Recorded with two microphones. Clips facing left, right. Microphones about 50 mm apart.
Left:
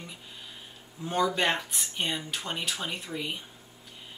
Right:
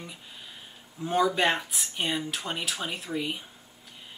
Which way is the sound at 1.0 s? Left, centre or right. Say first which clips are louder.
Right 2 dB; centre.